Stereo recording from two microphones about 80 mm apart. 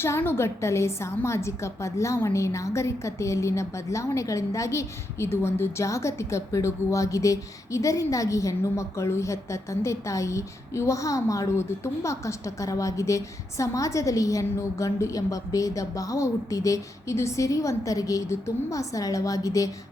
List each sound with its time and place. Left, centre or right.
0.0 s a woman's voice: left